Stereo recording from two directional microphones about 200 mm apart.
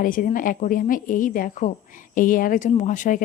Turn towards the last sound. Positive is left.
turn(degrees=40)  # may be behind; listen again after turning